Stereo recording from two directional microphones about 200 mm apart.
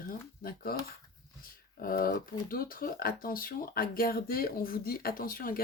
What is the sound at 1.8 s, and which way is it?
Speech, 45° left (ahead or behind).